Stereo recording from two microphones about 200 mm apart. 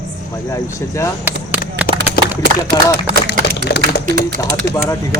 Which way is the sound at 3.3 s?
55° left (ahead or behind).